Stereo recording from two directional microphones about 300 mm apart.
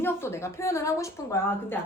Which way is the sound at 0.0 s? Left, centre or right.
Centre.